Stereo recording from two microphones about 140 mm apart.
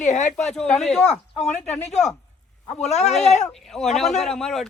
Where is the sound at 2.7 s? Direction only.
50° left (ahead or behind).